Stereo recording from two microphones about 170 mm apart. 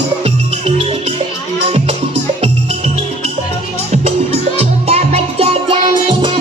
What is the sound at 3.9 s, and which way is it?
Music, 35° right (ahead or behind).